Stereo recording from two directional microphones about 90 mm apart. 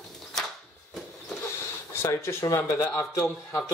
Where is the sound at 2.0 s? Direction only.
35° left (ahead or behind).